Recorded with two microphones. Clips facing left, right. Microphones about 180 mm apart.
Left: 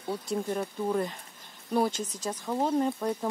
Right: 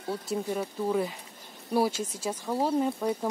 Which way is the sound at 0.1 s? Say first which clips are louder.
Even; 5° right (ahead or behind).